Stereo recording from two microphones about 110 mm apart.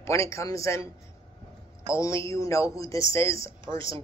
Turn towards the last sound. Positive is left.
turn(degrees=25)  # may be behind; listen again after turning